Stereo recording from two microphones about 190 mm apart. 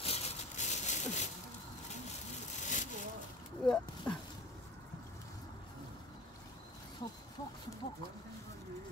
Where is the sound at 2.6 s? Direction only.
40° left (ahead or behind).